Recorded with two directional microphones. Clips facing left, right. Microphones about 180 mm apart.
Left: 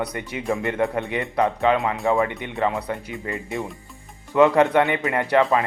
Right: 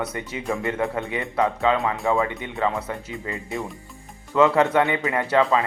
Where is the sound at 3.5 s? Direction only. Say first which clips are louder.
Even; centre (ahead or behind).